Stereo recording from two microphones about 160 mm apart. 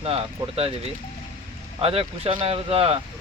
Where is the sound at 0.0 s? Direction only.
35° right (ahead or behind).